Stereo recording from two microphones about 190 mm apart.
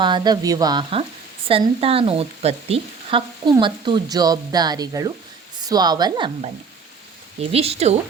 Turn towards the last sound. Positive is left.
turn(degrees=-35)  # may be behind; listen again after turning